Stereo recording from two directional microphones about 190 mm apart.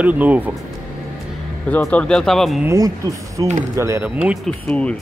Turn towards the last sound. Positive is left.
turn(degrees=5)  # may be behind; listen again after turning